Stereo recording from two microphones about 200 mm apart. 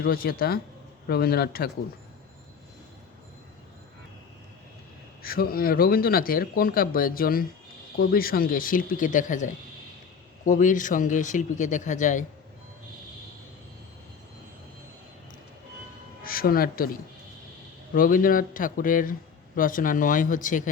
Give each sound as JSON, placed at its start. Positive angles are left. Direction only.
{"t": 0.0, "sound": "speech", "side_deg": 50}
{"t": 5.2, "sound": "speech", "side_deg": 45}
{"t": 16.2, "sound": "speech", "side_deg": 45}